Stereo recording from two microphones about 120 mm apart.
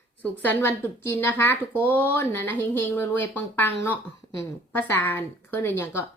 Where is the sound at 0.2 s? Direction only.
15° left (ahead or behind).